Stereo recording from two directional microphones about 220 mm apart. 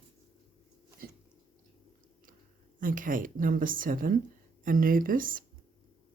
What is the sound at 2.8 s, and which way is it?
Speech, 40° right (ahead or behind).